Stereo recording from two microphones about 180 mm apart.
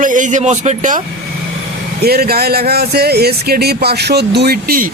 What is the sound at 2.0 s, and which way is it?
Speech, 60° right (ahead or behind).